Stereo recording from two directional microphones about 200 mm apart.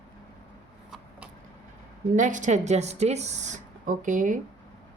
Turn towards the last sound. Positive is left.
turn(degrees=-40)  # may be behind; listen again after turning